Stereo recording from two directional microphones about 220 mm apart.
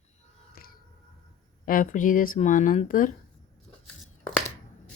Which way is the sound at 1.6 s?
40° left (ahead or behind).